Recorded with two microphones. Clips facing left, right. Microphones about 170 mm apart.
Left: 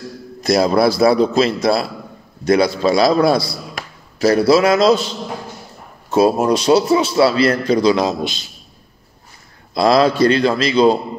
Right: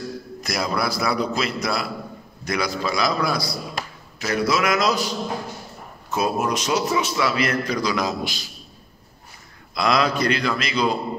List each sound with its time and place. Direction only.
0.4 s a man's voice: 30° left (ahead or behind)
9.8 s a man's voice: 30° left (ahead or behind)